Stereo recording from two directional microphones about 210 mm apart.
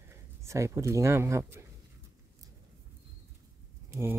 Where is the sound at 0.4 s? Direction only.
15° right (ahead or behind).